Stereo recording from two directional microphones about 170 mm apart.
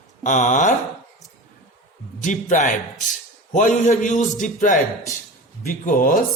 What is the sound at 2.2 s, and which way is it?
A man's voice, 45° left (ahead or behind).